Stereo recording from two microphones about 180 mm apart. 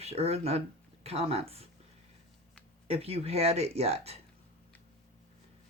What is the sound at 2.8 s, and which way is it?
Speech, 35° right (ahead or behind).